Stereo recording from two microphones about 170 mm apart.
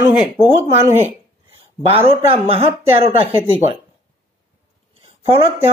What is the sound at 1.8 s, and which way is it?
Speech, 35° right (ahead or behind).